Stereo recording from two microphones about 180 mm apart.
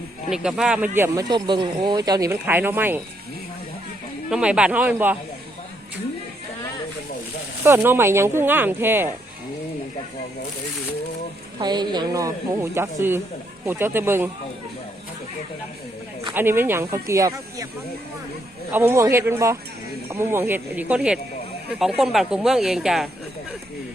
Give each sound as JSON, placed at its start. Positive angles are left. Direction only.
{"t": 0.3, "sound": "speech", "side_deg": -5}
{"t": 4.3, "sound": "speech", "side_deg": -5}
{"t": 7.6, "sound": "speech", "side_deg": -10}
{"t": 11.6, "sound": "a woman's voice", "side_deg": -25}
{"t": 16.3, "sound": "speech", "side_deg": -10}
{"t": 18.7, "sound": "speech", "side_deg": -15}